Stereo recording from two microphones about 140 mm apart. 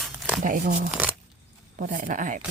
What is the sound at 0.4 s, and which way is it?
Speech, 70° right (ahead or behind).